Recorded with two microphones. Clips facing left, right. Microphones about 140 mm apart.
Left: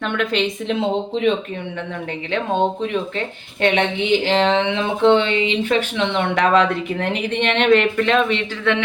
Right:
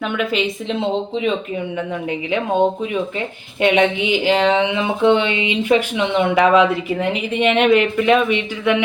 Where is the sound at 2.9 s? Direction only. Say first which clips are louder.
Right 1 dB; 10° right (ahead or behind).